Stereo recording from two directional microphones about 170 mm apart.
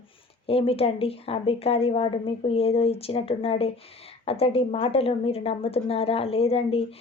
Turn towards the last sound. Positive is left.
turn(degrees=35)  # may be behind; listen again after turning